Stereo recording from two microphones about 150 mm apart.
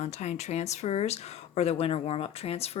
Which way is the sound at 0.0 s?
50° left (ahead or behind).